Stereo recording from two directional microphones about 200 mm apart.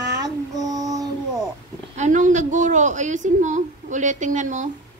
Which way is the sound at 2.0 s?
40° right (ahead or behind).